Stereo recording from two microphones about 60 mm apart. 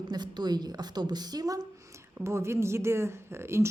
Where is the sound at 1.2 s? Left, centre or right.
Right.